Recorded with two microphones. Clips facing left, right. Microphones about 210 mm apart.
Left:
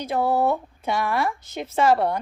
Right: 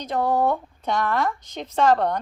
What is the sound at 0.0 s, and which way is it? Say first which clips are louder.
A woman's voice: even; 10° left (ahead or behind).